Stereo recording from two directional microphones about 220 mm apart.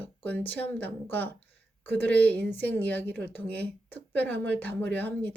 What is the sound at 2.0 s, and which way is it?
Speech, 50° right (ahead or behind).